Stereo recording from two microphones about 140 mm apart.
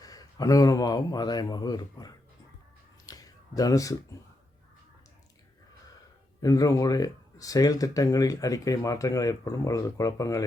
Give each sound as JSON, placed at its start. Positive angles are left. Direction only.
{"t": 0.0, "sound": "speech", "side_deg": 25}
{"t": 3.1, "sound": "a sound", "side_deg": 25}
{"t": 6.4, "sound": "speech", "side_deg": 25}